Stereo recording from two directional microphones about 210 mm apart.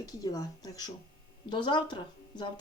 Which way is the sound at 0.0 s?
20° left (ahead or behind).